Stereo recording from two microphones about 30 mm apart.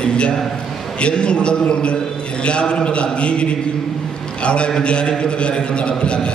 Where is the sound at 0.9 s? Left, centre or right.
Left.